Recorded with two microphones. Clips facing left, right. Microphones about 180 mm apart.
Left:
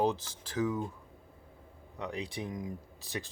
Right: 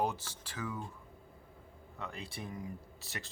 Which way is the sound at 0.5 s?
20° left (ahead or behind).